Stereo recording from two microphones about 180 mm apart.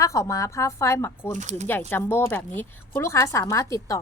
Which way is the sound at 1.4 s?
40° right (ahead or behind).